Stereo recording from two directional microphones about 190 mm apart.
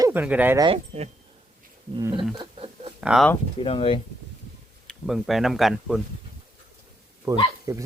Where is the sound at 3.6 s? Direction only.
30° left (ahead or behind).